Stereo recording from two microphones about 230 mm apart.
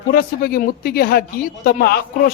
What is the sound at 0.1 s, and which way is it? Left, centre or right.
Speech, left.